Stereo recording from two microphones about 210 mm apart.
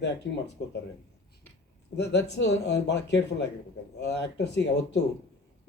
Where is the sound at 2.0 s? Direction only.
55° left (ahead or behind).